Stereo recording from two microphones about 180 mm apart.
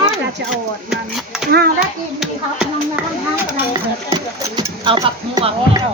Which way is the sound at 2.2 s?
5° right (ahead or behind).